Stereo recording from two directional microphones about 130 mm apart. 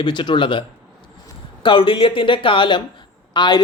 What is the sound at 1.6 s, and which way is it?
Speech, 40° left (ahead or behind).